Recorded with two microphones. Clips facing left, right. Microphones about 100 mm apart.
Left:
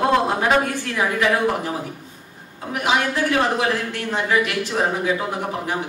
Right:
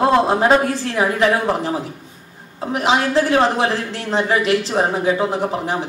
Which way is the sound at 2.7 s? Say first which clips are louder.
Right 4 dB; 30° right (ahead or behind).